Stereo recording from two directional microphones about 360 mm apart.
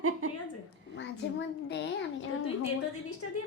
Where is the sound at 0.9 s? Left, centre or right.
Left.